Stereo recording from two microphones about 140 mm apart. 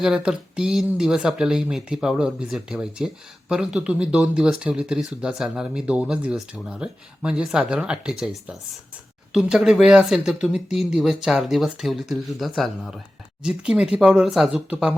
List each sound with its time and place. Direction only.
0.0 s speech: 5° right (ahead or behind)